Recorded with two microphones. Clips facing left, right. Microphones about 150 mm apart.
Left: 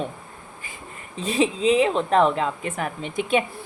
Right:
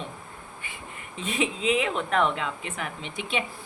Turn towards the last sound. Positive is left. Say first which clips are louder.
# left 9 dB
turn(degrees=45)  # may be behind; listen again after turning